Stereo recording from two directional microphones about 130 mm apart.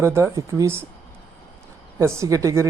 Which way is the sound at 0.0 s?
20° right (ahead or behind).